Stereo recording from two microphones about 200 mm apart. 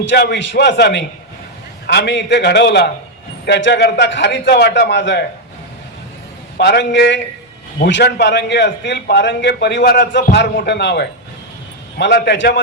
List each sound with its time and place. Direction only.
0.0 s a man's voice: 60° left (ahead or behind)
6.6 s a man's voice: 55° left (ahead or behind)